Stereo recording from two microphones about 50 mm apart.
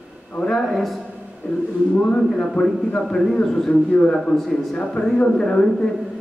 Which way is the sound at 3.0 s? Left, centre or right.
Centre.